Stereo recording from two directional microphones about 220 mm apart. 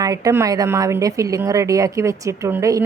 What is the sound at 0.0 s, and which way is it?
A woman's voice, 15° right (ahead or behind).